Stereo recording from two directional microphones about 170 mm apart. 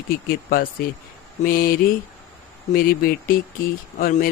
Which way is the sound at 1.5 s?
55° left (ahead or behind).